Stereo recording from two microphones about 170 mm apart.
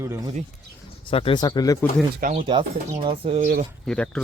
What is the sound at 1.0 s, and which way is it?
Speech, 30° left (ahead or behind).